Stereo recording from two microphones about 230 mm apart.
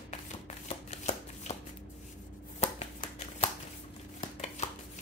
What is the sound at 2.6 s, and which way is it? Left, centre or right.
Shuffling cards, left.